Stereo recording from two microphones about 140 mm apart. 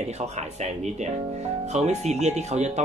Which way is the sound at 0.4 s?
55° right (ahead or behind).